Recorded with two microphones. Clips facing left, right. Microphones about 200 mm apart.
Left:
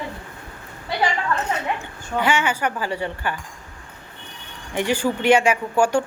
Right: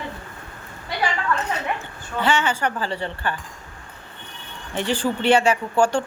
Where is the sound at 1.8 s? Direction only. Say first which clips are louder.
Left 2 dB; 10° left (ahead or behind).